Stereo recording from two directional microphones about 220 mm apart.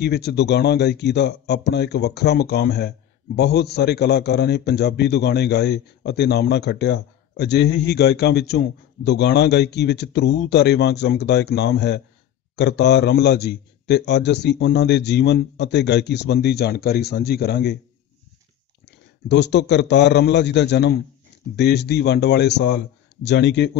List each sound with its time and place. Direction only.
0.0 s a man's voice: 50° left (ahead or behind)
18.9 s a man's voice: 50° left (ahead or behind)